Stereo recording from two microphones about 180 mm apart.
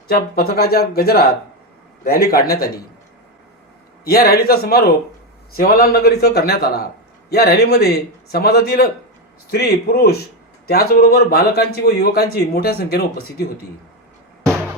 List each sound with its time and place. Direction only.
0.1 s speech: 60° left (ahead or behind)
4.0 s speech: 55° left (ahead or behind)